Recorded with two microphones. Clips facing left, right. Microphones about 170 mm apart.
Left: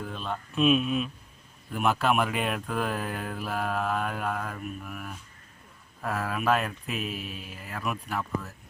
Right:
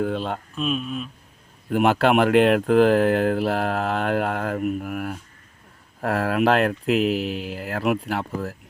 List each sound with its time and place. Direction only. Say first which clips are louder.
0.0 s speech: right 10 dB; 75° right (ahead or behind)
0.5 s speech: left 6 dB; 5° left (ahead or behind)
1.7 s speech: right 7 dB; 80° right